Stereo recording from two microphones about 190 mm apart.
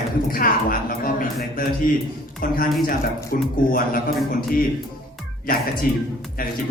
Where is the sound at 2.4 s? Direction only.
45° left (ahead or behind).